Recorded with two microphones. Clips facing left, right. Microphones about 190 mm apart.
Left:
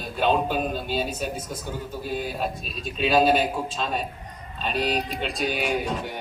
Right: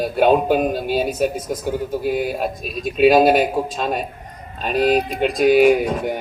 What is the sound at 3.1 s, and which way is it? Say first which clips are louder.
Speech: right 5 dB; 45° right (ahead or behind).